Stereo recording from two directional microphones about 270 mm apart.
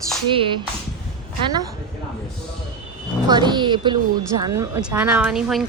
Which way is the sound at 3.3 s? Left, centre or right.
Centre.